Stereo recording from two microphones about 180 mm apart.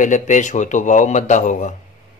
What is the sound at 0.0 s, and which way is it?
Speech, 45° left (ahead or behind).